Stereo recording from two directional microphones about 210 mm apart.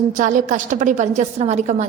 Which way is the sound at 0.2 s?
35° right (ahead or behind).